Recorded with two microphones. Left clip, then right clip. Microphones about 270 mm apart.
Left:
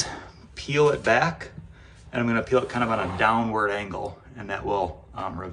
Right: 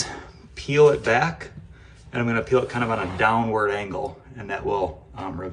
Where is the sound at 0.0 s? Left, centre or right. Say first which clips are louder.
Even; centre.